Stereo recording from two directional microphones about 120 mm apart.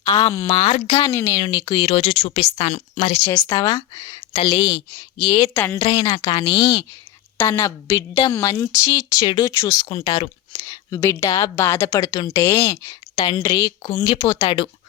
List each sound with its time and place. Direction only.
0.0 s speech: 35° left (ahead or behind)
0.5 s speech: 55° left (ahead or behind)
1.1 s a woman's voice: 20° left (ahead or behind)
1.4 s speech: 45° left (ahead or behind)
3.4 s speech: 35° left (ahead or behind)
5.5 s a woman's voice: 20° left (ahead or behind)
5.8 s speech: 35° left (ahead or behind)
7.3 s a woman's voice: 20° left (ahead or behind)
9.9 s speech: 55° left (ahead or behind)
10.5 s a woman's voice: 25° left (ahead or behind)
11.9 s a woman's voice: 30° left (ahead or behind)
13.8 s speech: 50° left (ahead or behind)
14.3 s speech: 35° left (ahead or behind)